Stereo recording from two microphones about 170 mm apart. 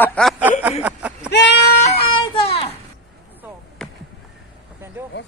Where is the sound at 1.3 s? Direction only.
85° left.